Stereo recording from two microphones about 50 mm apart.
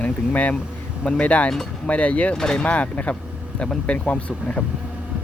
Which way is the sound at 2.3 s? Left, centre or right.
Centre.